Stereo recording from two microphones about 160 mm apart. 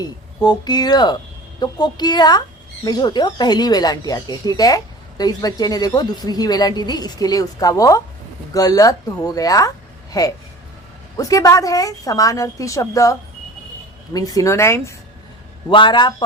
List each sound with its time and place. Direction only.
0.4 s speech: 25° left (ahead or behind)
15.7 s speech: 30° left (ahead or behind)